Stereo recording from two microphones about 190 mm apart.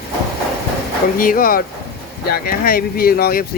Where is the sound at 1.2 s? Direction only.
50° left (ahead or behind).